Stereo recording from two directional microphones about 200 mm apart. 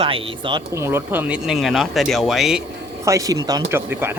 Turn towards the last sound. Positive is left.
turn(degrees=-10)  # may be behind; listen again after turning